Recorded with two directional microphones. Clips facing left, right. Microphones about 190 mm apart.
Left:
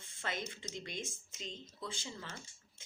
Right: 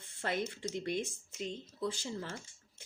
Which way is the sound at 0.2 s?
60° right (ahead or behind).